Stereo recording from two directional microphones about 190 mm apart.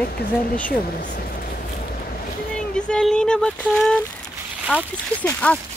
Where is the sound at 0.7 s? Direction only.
45° left (ahead or behind).